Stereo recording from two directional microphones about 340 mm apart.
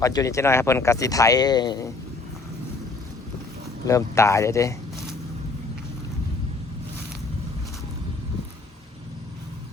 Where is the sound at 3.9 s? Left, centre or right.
Centre.